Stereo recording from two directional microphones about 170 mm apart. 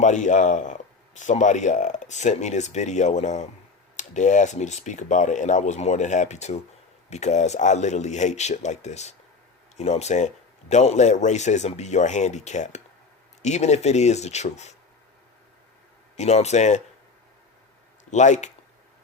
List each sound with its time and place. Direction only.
0.0 s a man's voice: 45° left (ahead or behind)
16.1 s a man's voice: 40° left (ahead or behind)
18.1 s a man's voice: 45° left (ahead or behind)